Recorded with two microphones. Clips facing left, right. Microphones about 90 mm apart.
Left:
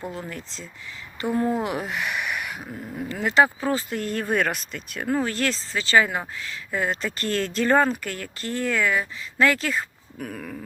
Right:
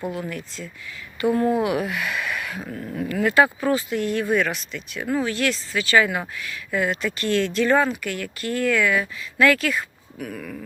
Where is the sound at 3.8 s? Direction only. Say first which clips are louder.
Right 4 dB; 40° left (ahead or behind).